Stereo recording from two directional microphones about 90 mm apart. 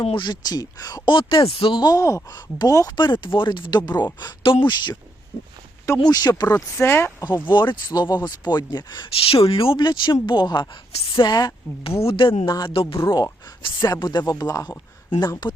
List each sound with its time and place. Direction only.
0.0 s speech: 90° left
0.3 s speech: 50° left (ahead or behind)
1.0 s speech: 65° left (ahead or behind)
1.9 s speech: 35° left (ahead or behind)
2.3 s speech: 50° left (ahead or behind)
2.9 s speech: 60° left (ahead or behind)
6.0 s speech: 50° left (ahead or behind)
6.7 s speech: 25° left (ahead or behind)
7.4 s speech: 60° left (ahead or behind); by 9.8 s 85° left
9.8 s speech: 55° left (ahead or behind)
12.0 s speech: 80° left
13.0 s speech: 45° left (ahead or behind)
13.6 s speech: 70° left (ahead or behind)
13.8 s speech: 50° left (ahead or behind)